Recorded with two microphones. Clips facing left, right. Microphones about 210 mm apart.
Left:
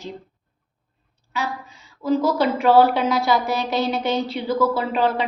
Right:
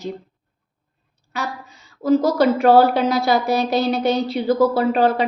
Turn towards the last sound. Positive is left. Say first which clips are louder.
# right 4 dB
turn(degrees=-40)  # may be behind; listen again after turning